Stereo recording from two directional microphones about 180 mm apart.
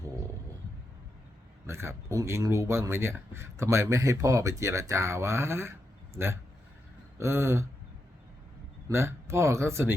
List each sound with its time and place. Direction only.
1.6 s speech: 15° right (ahead or behind)
8.9 s speech: 15° right (ahead or behind)